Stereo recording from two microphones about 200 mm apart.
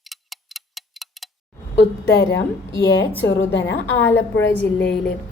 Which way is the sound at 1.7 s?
60° left (ahead or behind).